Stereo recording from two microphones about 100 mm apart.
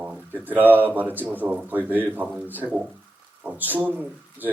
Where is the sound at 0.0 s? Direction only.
5° right (ahead or behind).